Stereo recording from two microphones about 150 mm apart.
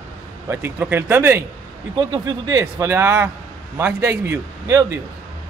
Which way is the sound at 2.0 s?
30° right (ahead or behind).